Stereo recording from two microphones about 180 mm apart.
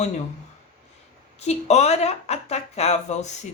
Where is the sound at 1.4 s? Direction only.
35° left (ahead or behind).